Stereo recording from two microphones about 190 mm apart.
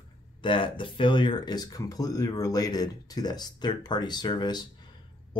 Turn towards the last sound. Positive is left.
turn(degrees=25)  # may be behind; listen again after turning